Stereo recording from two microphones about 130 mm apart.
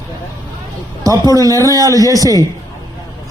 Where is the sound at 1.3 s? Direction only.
30° right (ahead or behind).